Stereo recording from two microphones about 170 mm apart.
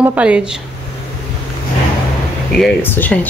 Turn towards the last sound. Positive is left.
turn(degrees=10)  # may be behind; listen again after turning